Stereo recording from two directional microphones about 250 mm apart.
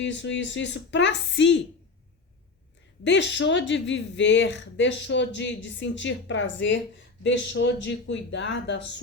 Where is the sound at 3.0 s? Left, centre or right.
Left.